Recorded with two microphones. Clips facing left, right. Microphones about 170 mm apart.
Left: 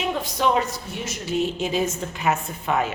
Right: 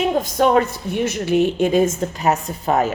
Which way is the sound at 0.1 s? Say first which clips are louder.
Right 4 dB; 45° right (ahead or behind).